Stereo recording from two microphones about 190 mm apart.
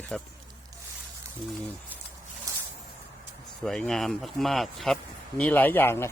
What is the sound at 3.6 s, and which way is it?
Speech, 5° left (ahead or behind).